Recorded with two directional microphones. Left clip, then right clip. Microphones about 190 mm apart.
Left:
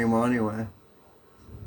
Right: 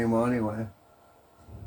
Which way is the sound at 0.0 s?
40° left (ahead or behind).